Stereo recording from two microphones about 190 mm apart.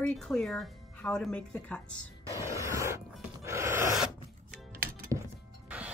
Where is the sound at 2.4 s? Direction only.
15° right (ahead or behind).